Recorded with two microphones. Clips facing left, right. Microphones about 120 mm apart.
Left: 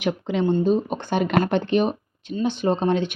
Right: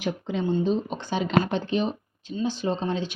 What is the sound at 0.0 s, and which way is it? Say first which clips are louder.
Speech: left 5 dB; 80° left.